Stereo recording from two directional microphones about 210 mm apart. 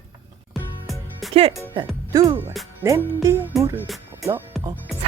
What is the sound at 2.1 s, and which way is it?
Speech, 15° right (ahead or behind).